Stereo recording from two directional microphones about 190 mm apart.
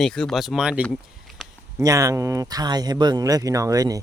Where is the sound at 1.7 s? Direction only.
15° right (ahead or behind).